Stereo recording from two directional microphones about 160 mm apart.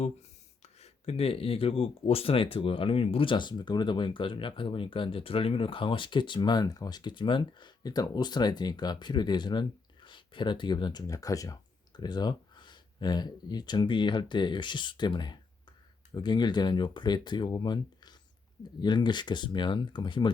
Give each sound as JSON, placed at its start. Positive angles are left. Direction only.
{"t": 0.6, "sound": "speech", "side_deg": 40}